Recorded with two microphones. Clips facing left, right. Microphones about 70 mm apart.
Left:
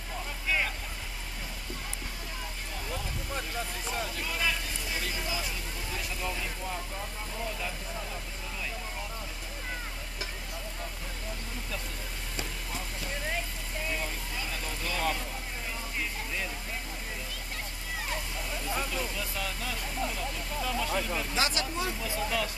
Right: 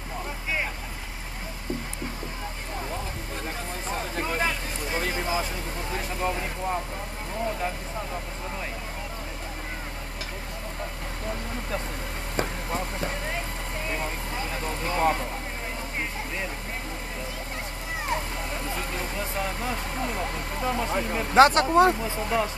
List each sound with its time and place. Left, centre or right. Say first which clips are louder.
3.9 s speech: right 7 dB; right
12.4 s a sound: right 10 dB; right
13.8 s speech: right 4 dB; right
18.9 s speech: right 4 dB; right
20.6 s speech: right 5 dB; right
22.0 s speech: right 5 dB; right